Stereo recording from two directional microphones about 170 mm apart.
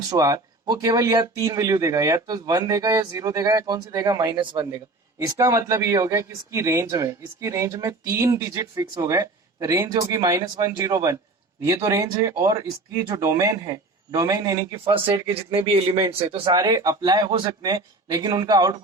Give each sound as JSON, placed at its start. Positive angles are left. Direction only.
{"t": 0.1, "sound": "speech", "side_deg": -20}
{"t": 15.1, "sound": "speech", "side_deg": -30}
{"t": 16.5, "sound": "speech", "side_deg": -25}